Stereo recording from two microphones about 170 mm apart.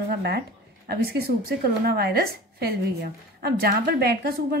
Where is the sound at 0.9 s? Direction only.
65° right (ahead or behind).